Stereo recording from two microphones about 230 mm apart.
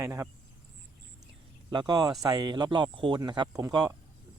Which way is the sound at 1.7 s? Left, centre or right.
Centre.